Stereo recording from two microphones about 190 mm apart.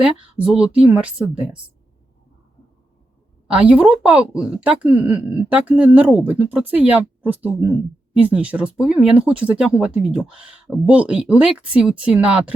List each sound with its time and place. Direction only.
0.0 s speech: 5° right (ahead or behind)
3.4 s speech: 5° right (ahead or behind)